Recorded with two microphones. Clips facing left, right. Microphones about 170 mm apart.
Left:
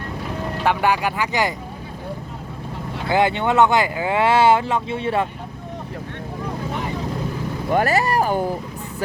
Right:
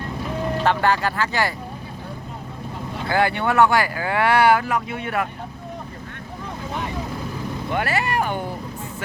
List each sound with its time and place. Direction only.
0.6 s speech: 10° left (ahead or behind)
3.1 s speech: 20° left (ahead or behind)
7.7 s speech: 40° left (ahead or behind)